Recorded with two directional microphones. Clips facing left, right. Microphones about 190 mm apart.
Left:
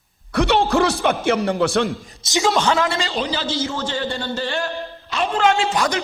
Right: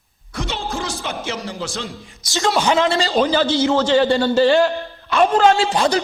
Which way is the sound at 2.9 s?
35° right (ahead or behind).